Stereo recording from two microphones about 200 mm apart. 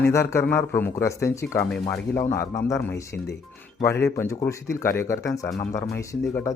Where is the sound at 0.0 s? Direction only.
15° left (ahead or behind).